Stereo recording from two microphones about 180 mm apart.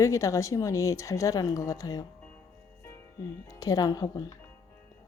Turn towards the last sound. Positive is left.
turn(degrees=20)  # may be behind; listen again after turning